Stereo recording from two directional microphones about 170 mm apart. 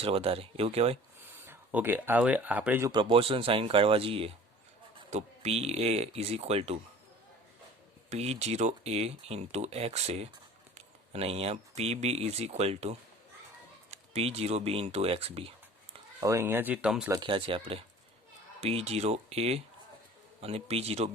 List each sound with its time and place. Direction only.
0.0 s speech: 35° right (ahead or behind)
1.2 s speech: 10° right (ahead or behind)
2.9 s speech: 30° right (ahead or behind)
8.1 s speech: 40° right (ahead or behind)
16.2 s speech: 15° right (ahead or behind)
17.1 s speech: 30° right (ahead or behind)